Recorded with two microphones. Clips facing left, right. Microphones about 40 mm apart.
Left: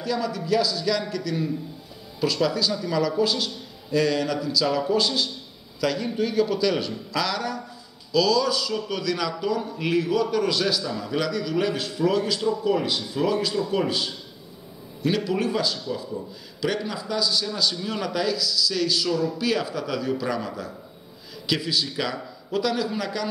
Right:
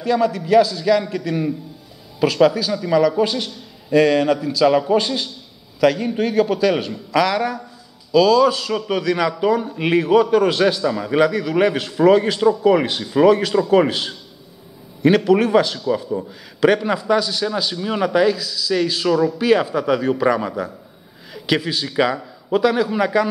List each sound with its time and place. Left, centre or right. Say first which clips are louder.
0.0 s a man's voice: right 8 dB; right
2.5 s a man's voice: right 6 dB; right
5.8 s a man's voice: right 9 dB; right
6.1 s a man's voice: right 5 dB; right
9.0 s a man's voice: right 8 dB; right
9.8 s a man's voice: right 8 dB; right
12.4 s a man's voice: right 10 dB; right
17.6 s a man's voice: right 6 dB; right
19.4 s a man's voice: right 9 dB; right